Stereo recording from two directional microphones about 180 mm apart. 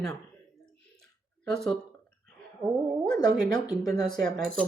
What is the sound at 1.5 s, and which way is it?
Speech, centre (ahead or behind).